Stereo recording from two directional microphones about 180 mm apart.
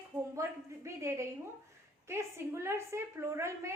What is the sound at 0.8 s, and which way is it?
A woman's voice, 15° right (ahead or behind).